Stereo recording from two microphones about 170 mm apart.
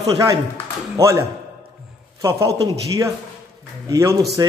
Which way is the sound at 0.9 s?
20° right (ahead or behind).